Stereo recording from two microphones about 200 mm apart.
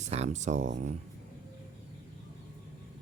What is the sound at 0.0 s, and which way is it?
Speech, 35° right (ahead or behind).